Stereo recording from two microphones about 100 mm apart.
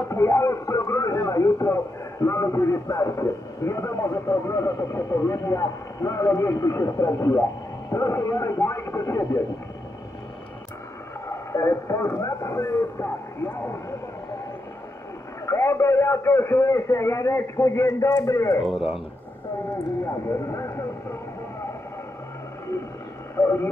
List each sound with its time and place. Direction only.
0.0 s speech: 30° left (ahead or behind)
11.2 s speech: 30° left (ahead or behind)
15.4 s a man's voice: 30° left (ahead or behind)
18.6 s speech: centre (ahead or behind)
20.1 s speech: 35° left (ahead or behind)
23.3 s a man's voice: 25° left (ahead or behind)